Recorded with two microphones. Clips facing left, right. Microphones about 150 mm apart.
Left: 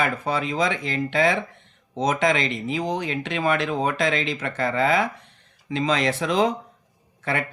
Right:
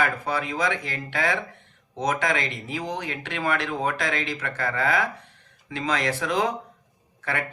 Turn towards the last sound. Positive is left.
turn(degrees=25)  # may be behind; listen again after turning